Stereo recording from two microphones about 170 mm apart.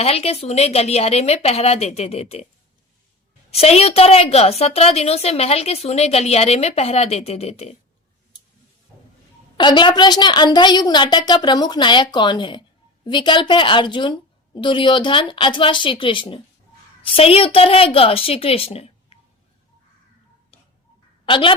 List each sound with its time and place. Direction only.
0.0 s a woman's voice: 35° left (ahead or behind)
3.5 s a woman's voice: 35° left (ahead or behind)
9.6 s a woman's voice: 25° left (ahead or behind)
21.2 s a woman's voice: 30° left (ahead or behind)